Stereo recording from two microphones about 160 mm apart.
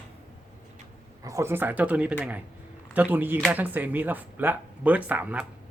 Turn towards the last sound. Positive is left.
turn(degrees=-10)  # may be behind; listen again after turning